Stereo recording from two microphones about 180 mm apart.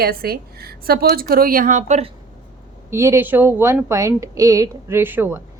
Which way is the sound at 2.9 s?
15° right (ahead or behind).